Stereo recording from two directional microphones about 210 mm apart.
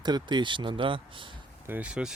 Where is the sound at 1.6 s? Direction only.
5° right (ahead or behind).